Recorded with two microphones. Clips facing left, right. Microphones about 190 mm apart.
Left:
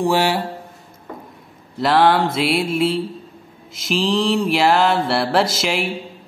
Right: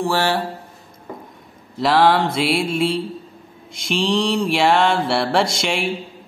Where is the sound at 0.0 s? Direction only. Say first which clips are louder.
Left 2 dB; 15° left (ahead or behind).